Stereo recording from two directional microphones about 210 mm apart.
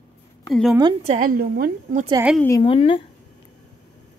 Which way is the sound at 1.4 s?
45° right (ahead or behind).